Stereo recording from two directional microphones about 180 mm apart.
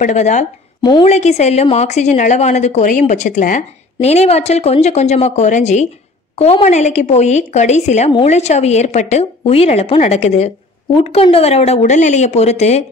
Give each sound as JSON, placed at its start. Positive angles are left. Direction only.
{"t": 0.0, "sound": "a woman's voice", "side_deg": 40}